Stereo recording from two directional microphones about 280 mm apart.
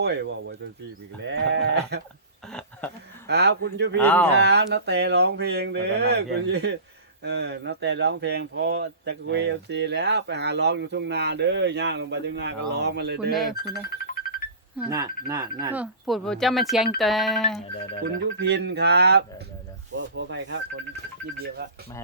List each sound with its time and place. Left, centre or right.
0.0 s speech: right
2.5 s a sound: centre
3.2 s speech: right
3.9 s speech: centre
4.4 s speech: right
14.2 s a sound: left
14.8 s speech: centre
18.2 s speech: right